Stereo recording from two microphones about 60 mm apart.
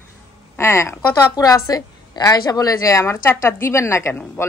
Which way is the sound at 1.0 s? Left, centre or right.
Left.